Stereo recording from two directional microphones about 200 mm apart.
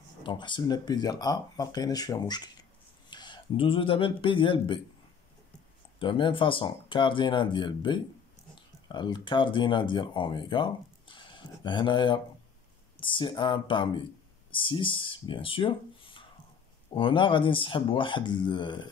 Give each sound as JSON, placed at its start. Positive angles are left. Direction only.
{"t": 0.2, "sound": "speech", "side_deg": 25}
{"t": 5.9, "sound": "speech", "side_deg": 25}